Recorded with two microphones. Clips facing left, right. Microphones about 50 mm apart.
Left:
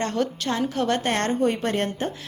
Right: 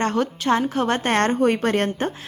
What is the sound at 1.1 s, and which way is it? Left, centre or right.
A woman's voice, right.